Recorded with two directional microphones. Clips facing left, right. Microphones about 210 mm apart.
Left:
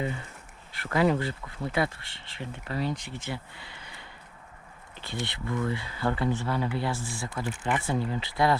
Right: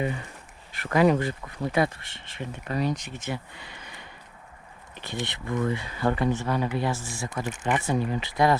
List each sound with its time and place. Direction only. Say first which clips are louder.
0.0 s speech: right 3 dB; 20° right (ahead or behind)